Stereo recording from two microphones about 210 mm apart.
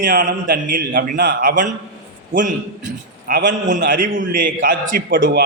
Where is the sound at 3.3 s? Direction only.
40° right (ahead or behind).